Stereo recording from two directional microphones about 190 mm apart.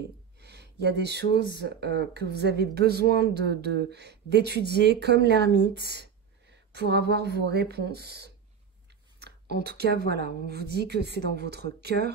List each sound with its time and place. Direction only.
0.4 s speech: 60° right (ahead or behind)
9.6 s speech: 60° right (ahead or behind)